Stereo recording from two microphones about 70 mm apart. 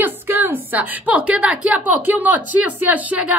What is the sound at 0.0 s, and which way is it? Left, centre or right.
Speech, right.